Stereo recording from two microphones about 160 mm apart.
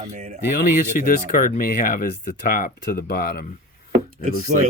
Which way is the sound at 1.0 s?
60° left (ahead or behind).